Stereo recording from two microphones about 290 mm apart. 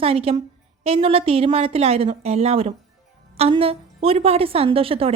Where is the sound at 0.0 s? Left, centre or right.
Centre.